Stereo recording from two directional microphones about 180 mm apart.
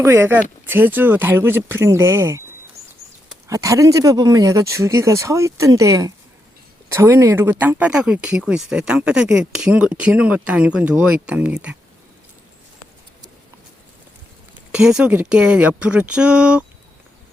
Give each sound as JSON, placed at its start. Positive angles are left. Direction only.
{"t": 0.0, "sound": "speech", "side_deg": -15}
{"t": 3.4, "sound": "speech", "side_deg": -20}
{"t": 14.7, "sound": "speech", "side_deg": -5}